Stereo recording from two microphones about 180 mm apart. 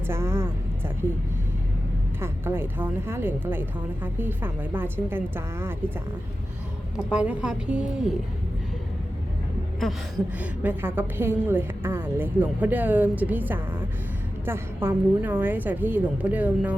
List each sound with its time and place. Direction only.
0.1 s a woman's voice: 15° right (ahead or behind)
2.2 s a woman's voice: 10° right (ahead or behind)
6.9 s a woman's voice: 5° right (ahead or behind)
10.6 s a woman's voice: 10° right (ahead or behind)